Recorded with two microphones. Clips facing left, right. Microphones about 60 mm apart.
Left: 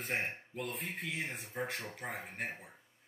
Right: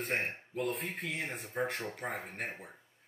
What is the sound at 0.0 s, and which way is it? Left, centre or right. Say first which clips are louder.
Speech: right 2 dB; centre.